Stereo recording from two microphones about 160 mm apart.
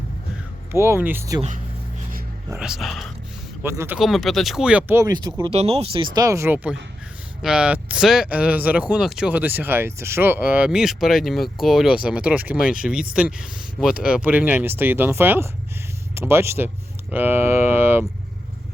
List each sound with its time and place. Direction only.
0.7 s speech: 15° right (ahead or behind)
1.4 s speech: 50° right (ahead or behind)
2.6 s speech: centre (ahead or behind)
3.6 s speech: 15° right (ahead or behind)
4.0 s speech: centre (ahead or behind); by 5.5 s 25° right (ahead or behind)
5.5 s speech: 40° right (ahead or behind)
6.1 s speech: 20° right (ahead or behind)
12.5 s speech: 60° left (ahead or behind)
12.8 s speech: 5° right (ahead or behind)